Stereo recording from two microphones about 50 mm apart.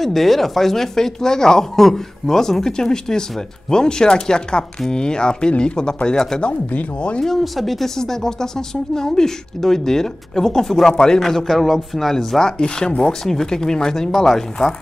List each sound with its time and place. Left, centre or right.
0.0 s speech: centre
6.7 s speech: left
7.2 s speech: centre